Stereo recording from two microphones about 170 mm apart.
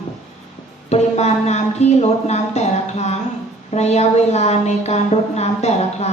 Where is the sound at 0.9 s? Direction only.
40° left (ahead or behind).